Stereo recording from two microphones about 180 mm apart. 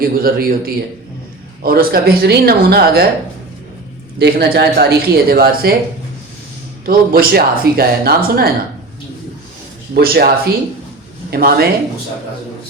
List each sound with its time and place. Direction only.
0.0 s speech: 55° right (ahead or behind)
4.2 s speech: 70° right (ahead or behind)
6.8 s speech: 55° right (ahead or behind)
9.9 s speech: 60° right (ahead or behind)
11.3 s speech: 60° right (ahead or behind)